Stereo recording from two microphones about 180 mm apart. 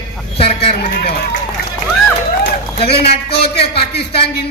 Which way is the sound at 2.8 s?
30° left (ahead or behind).